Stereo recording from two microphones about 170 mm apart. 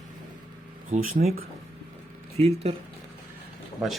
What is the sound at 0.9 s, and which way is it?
Speech, 45° right (ahead or behind).